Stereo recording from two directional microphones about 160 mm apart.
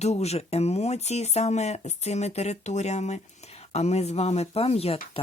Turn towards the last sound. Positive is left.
turn(degrees=35)  # may be behind; listen again after turning